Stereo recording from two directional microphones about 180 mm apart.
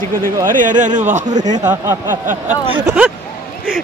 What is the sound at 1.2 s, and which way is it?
Speech, 20° right (ahead or behind).